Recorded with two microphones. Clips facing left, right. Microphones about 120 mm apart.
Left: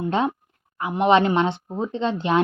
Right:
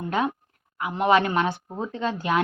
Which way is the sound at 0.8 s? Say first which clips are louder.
Left 3 dB; 25° left (ahead or behind).